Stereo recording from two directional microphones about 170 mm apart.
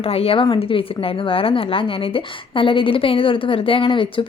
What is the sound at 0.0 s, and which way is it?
Speech, 35° left (ahead or behind).